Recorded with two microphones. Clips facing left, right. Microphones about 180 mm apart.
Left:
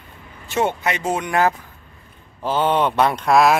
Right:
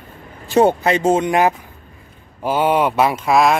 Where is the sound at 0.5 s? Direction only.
35° right (ahead or behind).